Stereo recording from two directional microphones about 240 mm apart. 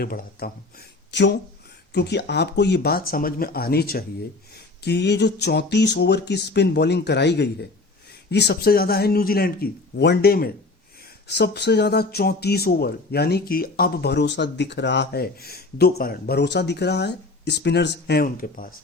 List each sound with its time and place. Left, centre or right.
0.0 s speech: left